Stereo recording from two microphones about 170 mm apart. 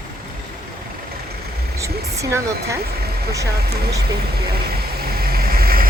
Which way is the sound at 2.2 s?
20° right (ahead or behind).